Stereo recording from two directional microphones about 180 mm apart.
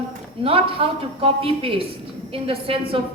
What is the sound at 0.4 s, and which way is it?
A woman's voice, 30° right (ahead or behind).